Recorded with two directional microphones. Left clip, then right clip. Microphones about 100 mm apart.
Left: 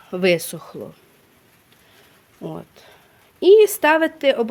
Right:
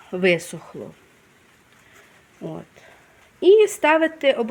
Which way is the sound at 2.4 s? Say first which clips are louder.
Left 1 dB; 40° left (ahead or behind).